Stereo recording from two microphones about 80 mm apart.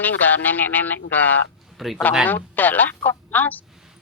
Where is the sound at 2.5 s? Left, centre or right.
Left.